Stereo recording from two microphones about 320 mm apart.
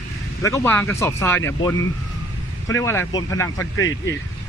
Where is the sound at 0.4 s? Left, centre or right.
Centre.